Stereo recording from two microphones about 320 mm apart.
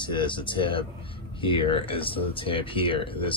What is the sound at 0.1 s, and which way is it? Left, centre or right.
Speech, centre.